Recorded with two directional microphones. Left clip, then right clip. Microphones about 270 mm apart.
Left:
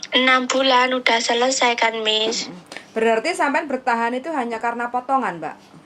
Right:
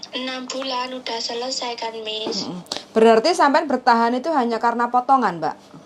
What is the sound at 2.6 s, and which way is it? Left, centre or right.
A woman's voice, right.